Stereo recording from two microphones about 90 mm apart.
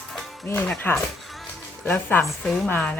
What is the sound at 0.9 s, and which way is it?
Speech, 20° left (ahead or behind).